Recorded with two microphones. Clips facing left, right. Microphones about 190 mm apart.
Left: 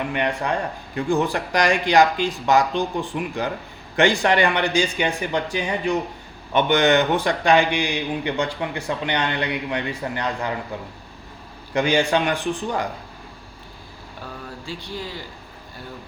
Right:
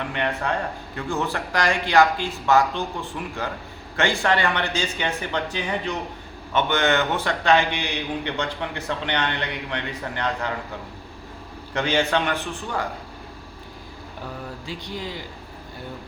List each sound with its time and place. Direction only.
0.1 s a man's voice: 15° left (ahead or behind)
11.7 s a man's voice: 10° left (ahead or behind)
14.7 s speech: 20° right (ahead or behind)